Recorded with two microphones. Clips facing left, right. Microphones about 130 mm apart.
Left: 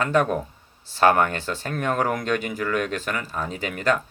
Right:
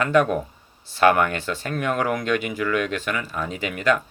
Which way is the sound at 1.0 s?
40° left (ahead or behind).